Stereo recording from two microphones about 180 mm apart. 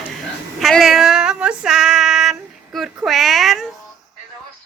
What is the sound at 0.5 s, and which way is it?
Female singing, centre (ahead or behind).